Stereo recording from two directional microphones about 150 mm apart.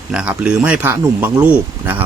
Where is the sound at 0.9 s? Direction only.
20° right (ahead or behind).